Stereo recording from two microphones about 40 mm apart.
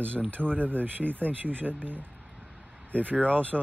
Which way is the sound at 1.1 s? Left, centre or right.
Right.